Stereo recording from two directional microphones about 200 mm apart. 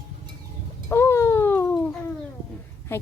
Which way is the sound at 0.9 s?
10° left (ahead or behind).